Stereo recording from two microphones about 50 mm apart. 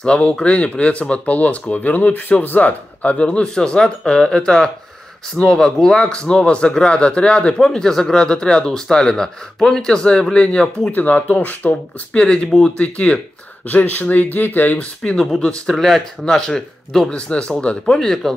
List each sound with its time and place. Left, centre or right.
0.0 s speech: centre
10.9 s speech: left
13.7 s speech: left
15.7 s speech: centre
17.1 s speech: left
17.9 s speech: centre